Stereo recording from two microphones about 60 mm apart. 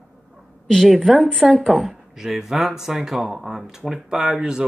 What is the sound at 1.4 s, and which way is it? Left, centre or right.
Speech, centre.